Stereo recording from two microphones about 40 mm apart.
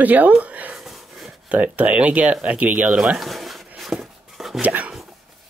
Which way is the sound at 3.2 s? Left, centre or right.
Centre.